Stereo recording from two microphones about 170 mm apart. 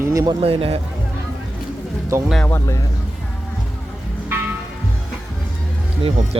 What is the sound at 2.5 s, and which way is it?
Speech, 15° left (ahead or behind).